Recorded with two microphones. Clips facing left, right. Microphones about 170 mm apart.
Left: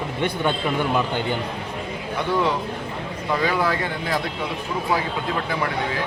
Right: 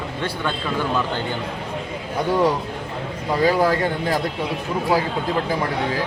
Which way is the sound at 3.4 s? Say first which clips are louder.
Right 7 dB; 40° right (ahead or behind).